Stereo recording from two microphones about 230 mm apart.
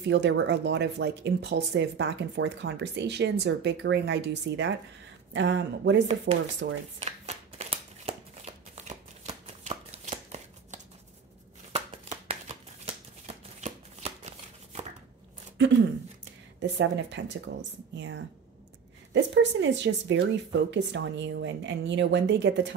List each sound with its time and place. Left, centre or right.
0.0 s speech: right
6.3 s speech: right
7.0 s shuffling cards: right
16.7 s speech: right